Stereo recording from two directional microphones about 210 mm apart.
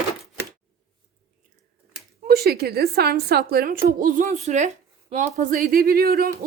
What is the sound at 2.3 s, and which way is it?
A woman's voice, 50° right (ahead or behind).